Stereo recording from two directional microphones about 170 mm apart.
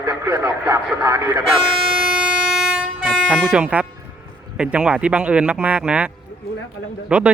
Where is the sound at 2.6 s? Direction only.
5° right (ahead or behind).